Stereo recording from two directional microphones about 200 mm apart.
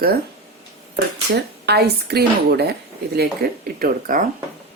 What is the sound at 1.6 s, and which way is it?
A woman's voice, 55° right (ahead or behind).